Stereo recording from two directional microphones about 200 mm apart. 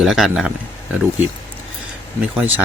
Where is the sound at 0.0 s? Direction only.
Centre (ahead or behind).